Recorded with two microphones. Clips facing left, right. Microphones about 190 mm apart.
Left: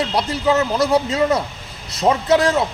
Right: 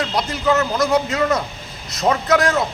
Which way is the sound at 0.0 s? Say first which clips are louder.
Left 2 dB; 30° left (ahead or behind).